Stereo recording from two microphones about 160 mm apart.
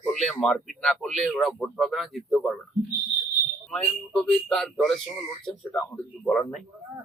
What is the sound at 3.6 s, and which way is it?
Speech, 5° left (ahead or behind).